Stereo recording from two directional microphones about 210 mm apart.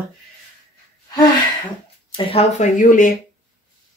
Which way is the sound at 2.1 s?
25° left (ahead or behind).